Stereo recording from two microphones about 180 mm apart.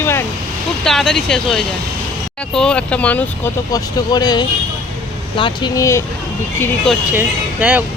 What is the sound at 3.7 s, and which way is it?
Speech, 20° left (ahead or behind).